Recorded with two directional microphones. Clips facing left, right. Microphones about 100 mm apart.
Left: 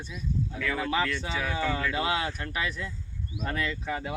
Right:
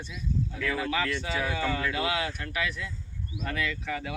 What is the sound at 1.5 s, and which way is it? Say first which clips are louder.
Speech: left 1 dB; 20° left (ahead or behind).